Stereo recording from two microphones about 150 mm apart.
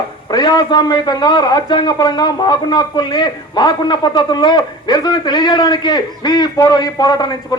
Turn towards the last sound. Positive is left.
turn(degrees=30)  # may be behind; listen again after turning